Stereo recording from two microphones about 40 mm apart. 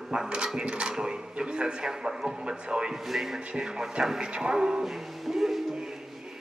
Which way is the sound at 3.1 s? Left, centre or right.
Centre.